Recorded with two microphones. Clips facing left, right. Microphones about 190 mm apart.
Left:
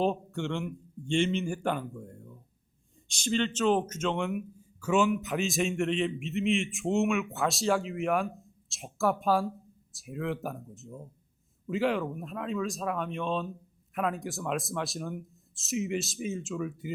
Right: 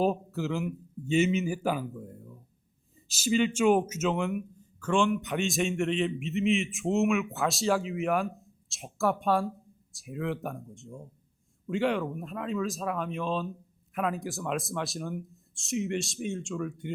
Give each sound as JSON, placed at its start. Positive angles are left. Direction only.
{"t": 0.0, "sound": "speech", "side_deg": -5}